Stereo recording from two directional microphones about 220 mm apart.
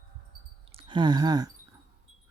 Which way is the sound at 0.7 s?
20° right (ahead or behind).